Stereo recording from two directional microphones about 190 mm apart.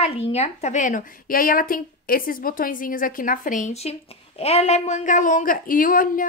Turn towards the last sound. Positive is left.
turn(degrees=45)  # may be behind; listen again after turning